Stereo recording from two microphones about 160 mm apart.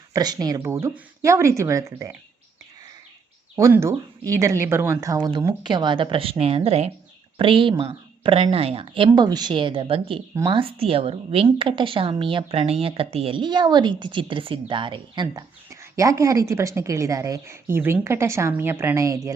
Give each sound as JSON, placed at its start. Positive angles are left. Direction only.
{"t": 0.1, "sound": "speech", "side_deg": -25}
{"t": 3.5, "sound": "a woman's voice", "side_deg": -15}
{"t": 9.0, "sound": "a woman's voice", "side_deg": -25}